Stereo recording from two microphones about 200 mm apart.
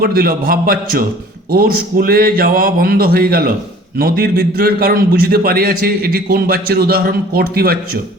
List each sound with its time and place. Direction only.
0.0 s a man's voice: 50° right (ahead or behind)